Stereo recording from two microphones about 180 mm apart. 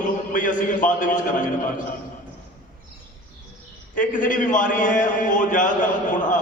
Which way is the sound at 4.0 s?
45° left (ahead or behind).